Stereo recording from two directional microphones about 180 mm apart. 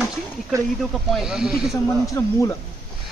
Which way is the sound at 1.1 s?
Centre (ahead or behind).